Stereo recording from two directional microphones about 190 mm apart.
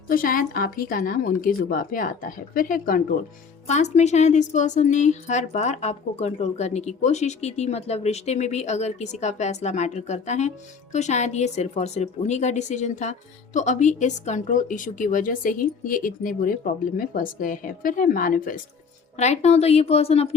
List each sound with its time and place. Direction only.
0.1 s a woman's voice: 45° left (ahead or behind)
3.7 s a woman's voice: 35° left (ahead or behind)